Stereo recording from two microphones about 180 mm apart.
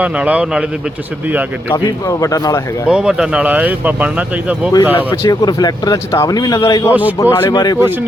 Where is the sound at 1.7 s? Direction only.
15° left (ahead or behind).